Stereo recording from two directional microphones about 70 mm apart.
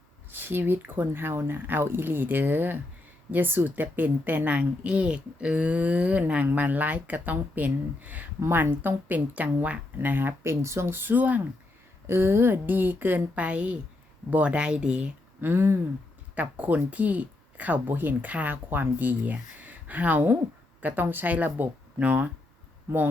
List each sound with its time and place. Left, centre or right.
0.3 s a woman's voice: right
12.0 s a woman's voice: right; by 15.1 s centre
15.4 s a sound: right
16.3 s a woman's voice: right